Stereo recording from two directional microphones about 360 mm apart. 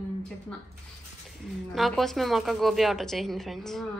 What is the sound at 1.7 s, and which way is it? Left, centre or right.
Speech, centre.